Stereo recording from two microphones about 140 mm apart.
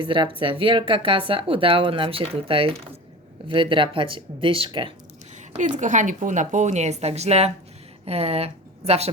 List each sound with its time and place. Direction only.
0.0 s speech: 35° right (ahead or behind)
5.4 s a woman's voice: 60° right (ahead or behind)